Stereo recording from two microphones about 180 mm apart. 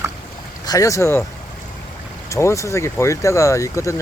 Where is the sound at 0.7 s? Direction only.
20° left (ahead or behind).